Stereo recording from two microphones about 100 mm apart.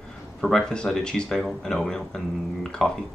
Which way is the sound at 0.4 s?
5° left (ahead or behind).